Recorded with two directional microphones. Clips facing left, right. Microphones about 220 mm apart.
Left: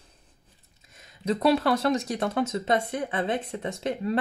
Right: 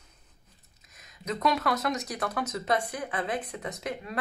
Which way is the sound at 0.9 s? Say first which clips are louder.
Left 7 dB; 30° left (ahead or behind).